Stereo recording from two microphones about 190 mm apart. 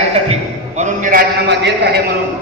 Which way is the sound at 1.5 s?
65° right (ahead or behind).